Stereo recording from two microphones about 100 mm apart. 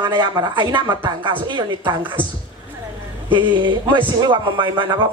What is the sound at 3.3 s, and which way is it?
Speech, 55° right (ahead or behind).